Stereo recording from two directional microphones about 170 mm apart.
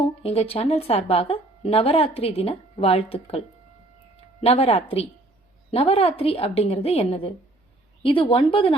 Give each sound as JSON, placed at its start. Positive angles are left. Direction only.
{"t": 0.0, "sound": "speech", "side_deg": 35}